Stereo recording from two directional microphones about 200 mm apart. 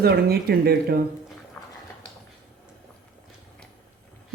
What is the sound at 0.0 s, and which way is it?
Speech, 50° right (ahead or behind).